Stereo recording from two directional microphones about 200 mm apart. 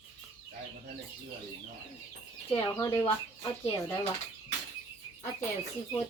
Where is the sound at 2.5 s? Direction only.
15° left (ahead or behind).